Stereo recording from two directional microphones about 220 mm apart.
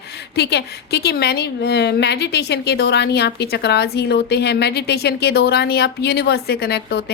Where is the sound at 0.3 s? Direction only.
50° left (ahead or behind).